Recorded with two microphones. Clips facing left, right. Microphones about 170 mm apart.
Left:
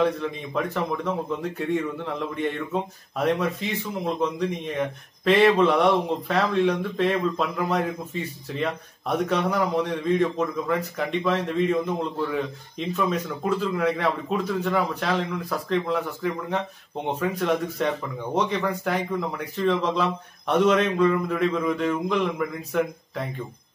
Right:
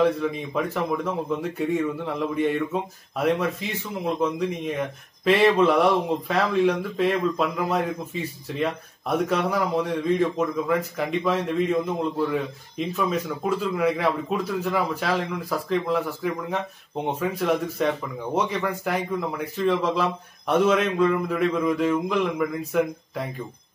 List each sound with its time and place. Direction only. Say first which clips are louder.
0.0 s speech: right 2 dB; 5° right (ahead or behind)